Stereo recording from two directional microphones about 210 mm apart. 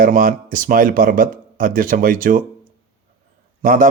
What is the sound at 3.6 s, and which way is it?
Speech, 40° right (ahead or behind).